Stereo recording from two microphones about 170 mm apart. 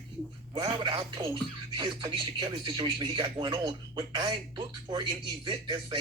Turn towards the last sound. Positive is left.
turn(degrees=-30)  # may be behind; listen again after turning